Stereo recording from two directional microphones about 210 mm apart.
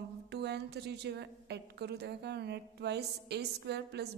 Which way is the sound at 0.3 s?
50° right (ahead or behind).